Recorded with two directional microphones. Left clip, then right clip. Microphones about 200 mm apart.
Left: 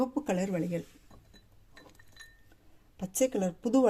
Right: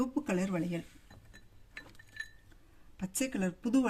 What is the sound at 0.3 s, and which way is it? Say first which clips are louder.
Speech: left 3 dB; 5° left (ahead or behind).